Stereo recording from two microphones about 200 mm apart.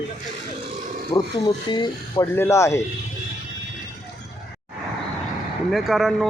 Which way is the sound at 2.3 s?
15° left (ahead or behind).